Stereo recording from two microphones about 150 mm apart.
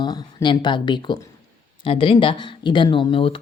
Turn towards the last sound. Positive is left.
turn(degrees=35)  # may be behind; listen again after turning